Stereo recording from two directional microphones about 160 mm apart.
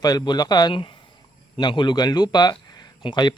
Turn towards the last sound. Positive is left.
turn(degrees=30)  # may be behind; listen again after turning